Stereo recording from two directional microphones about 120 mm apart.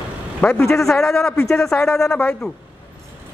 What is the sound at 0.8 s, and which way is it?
A man's voice, 5° left (ahead or behind).